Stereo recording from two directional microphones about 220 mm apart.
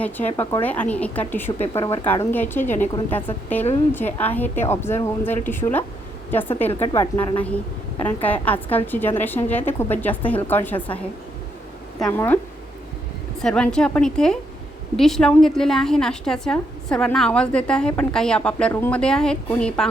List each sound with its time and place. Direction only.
0.0 s a woman's voice: 10° left (ahead or behind)
6.7 s speech: 30° left (ahead or behind)
6.9 s a woman's voice: 15° left (ahead or behind)
13.4 s a woman's voice: 5° left (ahead or behind)